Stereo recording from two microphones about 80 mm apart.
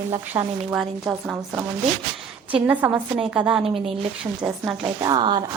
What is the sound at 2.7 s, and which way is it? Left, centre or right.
Speech, right.